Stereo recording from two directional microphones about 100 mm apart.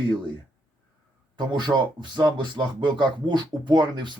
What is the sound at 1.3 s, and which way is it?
Speech, 50° right (ahead or behind).